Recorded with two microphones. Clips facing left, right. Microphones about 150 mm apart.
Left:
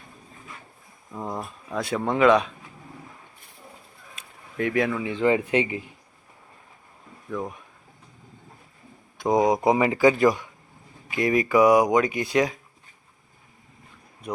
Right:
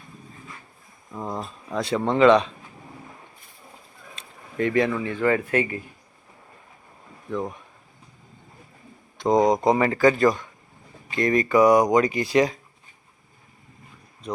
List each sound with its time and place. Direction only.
1.1 s speech: 10° left (ahead or behind)
4.1 s a sound: 5° left (ahead or behind)
5.1 s speech: 20° left (ahead or behind)
7.3 s speech: centre (ahead or behind)
9.1 s speech: 5° left (ahead or behind)